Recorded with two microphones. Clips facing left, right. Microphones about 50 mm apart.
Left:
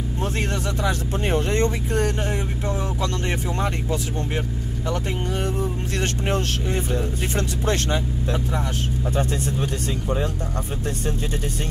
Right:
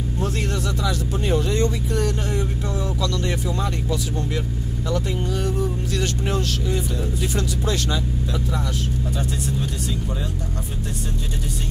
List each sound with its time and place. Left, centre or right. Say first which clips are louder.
0.2 s speech: even; left